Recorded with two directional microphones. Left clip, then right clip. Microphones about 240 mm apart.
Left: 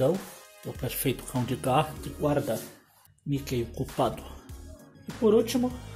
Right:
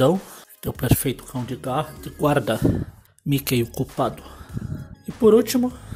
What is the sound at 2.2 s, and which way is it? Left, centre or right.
Speech, right.